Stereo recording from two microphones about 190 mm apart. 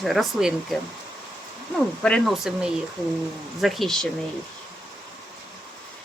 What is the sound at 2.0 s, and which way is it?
Speech, 5° left (ahead or behind).